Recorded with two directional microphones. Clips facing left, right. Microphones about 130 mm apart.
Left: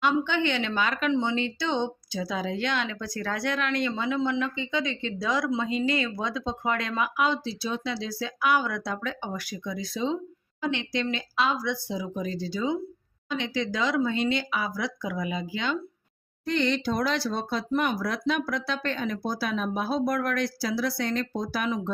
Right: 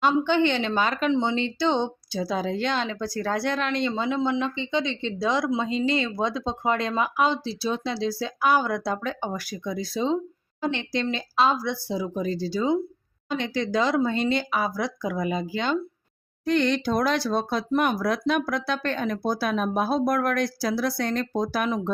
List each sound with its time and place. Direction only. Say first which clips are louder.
0.0 s speech: right 4 dB; 35° right (ahead or behind)
16.5 s speech: right 3 dB; 55° right (ahead or behind)